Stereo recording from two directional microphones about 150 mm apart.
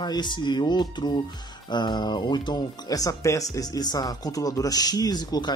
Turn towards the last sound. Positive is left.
turn(degrees=25)  # may be behind; listen again after turning